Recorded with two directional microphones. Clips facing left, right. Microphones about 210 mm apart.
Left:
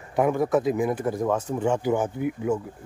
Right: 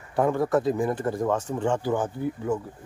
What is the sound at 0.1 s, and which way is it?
Speech, 15° left (ahead or behind).